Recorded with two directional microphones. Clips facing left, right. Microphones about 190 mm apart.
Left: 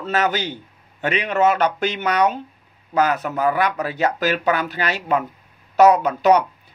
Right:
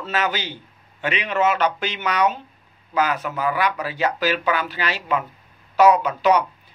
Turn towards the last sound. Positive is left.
turn(degrees=40)  # may be behind; listen again after turning